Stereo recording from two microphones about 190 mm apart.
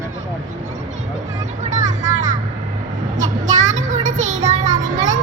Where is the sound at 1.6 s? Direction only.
40° right (ahead or behind).